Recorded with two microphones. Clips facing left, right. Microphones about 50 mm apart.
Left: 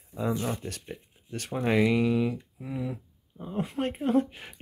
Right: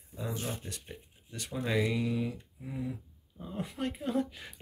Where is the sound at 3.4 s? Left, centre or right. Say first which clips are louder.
Left 6 dB; left.